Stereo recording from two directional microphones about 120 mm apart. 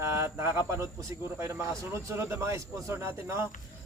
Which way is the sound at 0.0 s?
25° right (ahead or behind).